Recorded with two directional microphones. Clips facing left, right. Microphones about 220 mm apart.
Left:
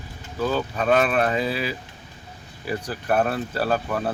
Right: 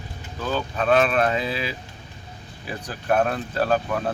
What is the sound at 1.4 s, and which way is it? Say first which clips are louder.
Speech: left 2 dB; 40° left (ahead or behind).